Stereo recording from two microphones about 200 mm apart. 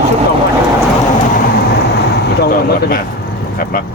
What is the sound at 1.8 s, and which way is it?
Vehicle, 55° left (ahead or behind).